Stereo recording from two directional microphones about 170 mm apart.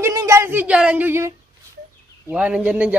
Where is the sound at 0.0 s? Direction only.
15° right (ahead or behind).